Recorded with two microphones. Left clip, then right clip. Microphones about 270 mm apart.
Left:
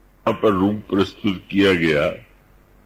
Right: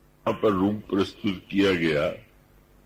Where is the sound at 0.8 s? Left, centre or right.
Right.